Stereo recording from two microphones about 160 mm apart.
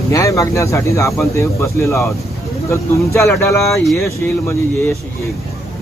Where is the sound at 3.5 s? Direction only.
20° left (ahead or behind).